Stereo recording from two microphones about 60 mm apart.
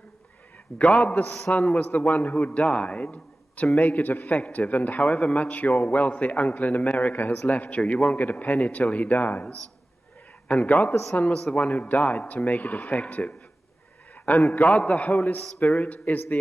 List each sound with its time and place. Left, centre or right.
0.7 s a man's voice: centre
1.6 s a man's voice: centre
1.9 s a man's voice: left
10.5 s a man's voice: left
14.7 s a man's voice: centre